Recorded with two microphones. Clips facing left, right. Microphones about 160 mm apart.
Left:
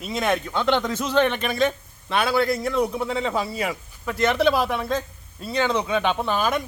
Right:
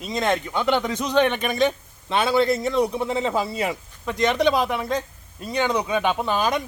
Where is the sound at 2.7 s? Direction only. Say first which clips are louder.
Right 1 dB; centre (ahead or behind).